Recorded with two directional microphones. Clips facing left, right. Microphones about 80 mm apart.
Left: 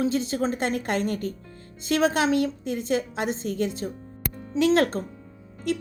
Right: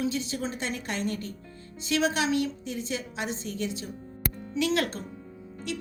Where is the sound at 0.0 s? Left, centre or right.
Left.